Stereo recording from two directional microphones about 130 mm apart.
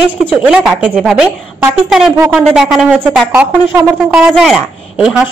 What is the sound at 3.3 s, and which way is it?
Speech, 20° right (ahead or behind).